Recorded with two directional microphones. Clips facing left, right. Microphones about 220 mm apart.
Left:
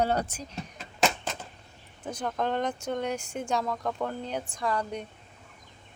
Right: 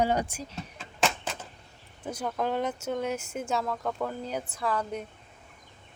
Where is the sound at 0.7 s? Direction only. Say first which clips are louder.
Left 2 dB; centre (ahead or behind).